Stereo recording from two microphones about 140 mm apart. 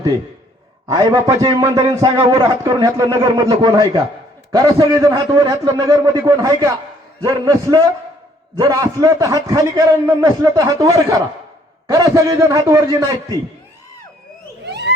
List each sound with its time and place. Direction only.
0.9 s a man's voice: 25° right (ahead or behind)
3.2 s a man's voice: 35° right (ahead or behind)
5.1 s a man's voice: 25° right (ahead or behind)